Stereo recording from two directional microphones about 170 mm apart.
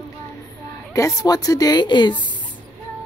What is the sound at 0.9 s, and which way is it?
A woman's voice, 20° left (ahead or behind).